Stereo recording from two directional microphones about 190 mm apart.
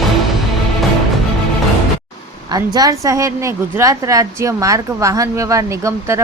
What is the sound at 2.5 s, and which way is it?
A woman's voice, 20° right (ahead or behind).